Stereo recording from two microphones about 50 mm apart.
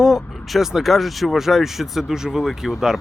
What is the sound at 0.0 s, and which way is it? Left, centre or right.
Vehicle, centre.